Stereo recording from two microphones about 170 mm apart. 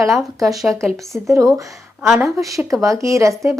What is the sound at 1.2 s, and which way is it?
Speech, 20° right (ahead or behind).